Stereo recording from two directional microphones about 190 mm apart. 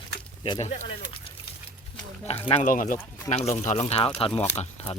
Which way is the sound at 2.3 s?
35° left (ahead or behind).